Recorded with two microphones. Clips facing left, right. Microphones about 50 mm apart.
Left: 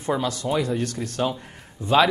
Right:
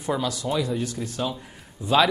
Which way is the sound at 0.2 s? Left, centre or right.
Left.